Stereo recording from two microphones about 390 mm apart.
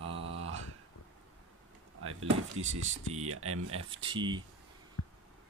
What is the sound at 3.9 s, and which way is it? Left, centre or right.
Speech, centre.